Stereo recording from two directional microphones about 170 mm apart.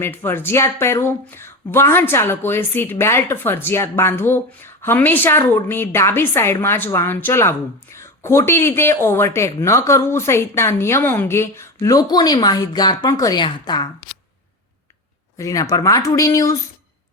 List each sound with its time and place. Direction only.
0.0 s speech: 15° left (ahead or behind)
15.4 s speech: 20° left (ahead or behind)